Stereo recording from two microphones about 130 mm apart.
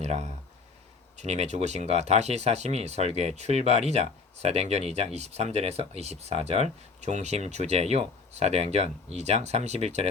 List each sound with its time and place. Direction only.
0.0 s speech: 55° right (ahead or behind)